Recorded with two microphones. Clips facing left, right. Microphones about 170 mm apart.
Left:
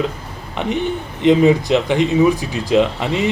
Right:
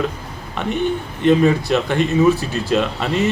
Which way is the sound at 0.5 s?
15° left (ahead or behind).